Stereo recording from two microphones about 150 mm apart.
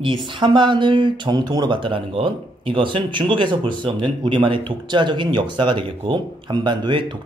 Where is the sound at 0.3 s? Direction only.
30° right (ahead or behind).